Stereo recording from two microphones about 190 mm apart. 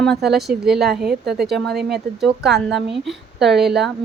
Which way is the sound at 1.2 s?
60° right (ahead or behind).